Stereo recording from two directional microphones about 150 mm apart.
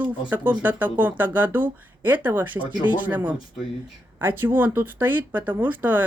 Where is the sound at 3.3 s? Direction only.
40° left (ahead or behind).